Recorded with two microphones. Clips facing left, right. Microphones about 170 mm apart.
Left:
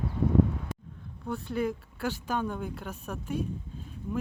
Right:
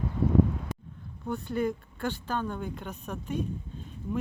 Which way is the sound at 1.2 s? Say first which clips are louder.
Right 1 dB; centre (ahead or behind).